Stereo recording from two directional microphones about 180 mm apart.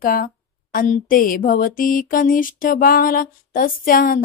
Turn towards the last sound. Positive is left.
turn(degrees=50)  # may be behind; listen again after turning